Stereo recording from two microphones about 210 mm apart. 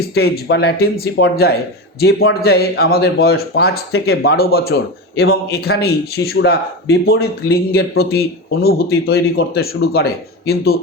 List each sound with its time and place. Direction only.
0.1 s speech: 50° left (ahead or behind)